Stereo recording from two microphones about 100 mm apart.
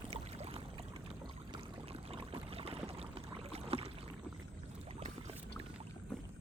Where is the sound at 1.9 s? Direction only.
70° right (ahead or behind).